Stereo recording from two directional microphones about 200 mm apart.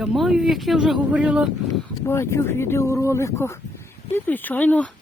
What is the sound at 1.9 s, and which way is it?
Speech, 15° left (ahead or behind).